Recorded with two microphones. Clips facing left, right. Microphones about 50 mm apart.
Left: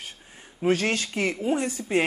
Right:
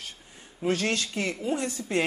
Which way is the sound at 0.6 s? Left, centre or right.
Left.